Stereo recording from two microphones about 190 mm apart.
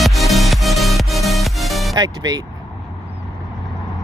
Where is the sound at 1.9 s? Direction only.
20° right (ahead or behind).